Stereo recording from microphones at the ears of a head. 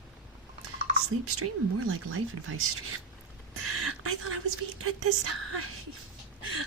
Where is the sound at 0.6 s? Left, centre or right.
Right.